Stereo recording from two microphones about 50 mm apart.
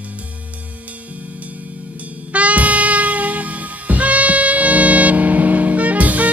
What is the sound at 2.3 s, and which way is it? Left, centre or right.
Music, right.